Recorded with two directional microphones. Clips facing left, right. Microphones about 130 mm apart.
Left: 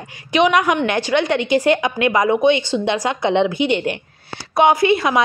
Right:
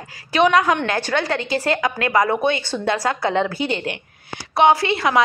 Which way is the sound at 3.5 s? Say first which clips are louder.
Left 5 dB; 35° right (ahead or behind).